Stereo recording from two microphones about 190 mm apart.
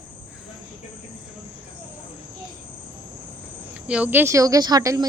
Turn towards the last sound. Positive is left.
turn(degrees=-20)  # may be behind; listen again after turning